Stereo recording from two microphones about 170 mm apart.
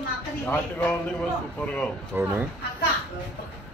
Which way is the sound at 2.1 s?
10° right (ahead or behind).